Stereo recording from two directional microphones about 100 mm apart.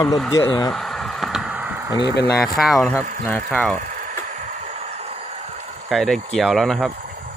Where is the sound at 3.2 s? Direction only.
15° left (ahead or behind).